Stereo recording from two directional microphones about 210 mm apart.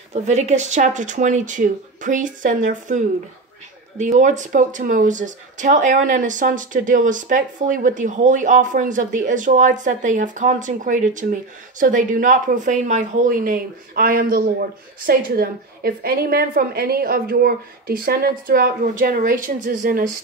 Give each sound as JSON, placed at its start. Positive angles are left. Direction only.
{"t": 0.1, "sound": "speech", "side_deg": -35}
{"t": 4.0, "sound": "a woman's voice", "side_deg": -35}